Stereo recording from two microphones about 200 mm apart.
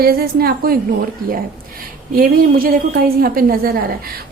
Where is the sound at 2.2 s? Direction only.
45° right (ahead or behind).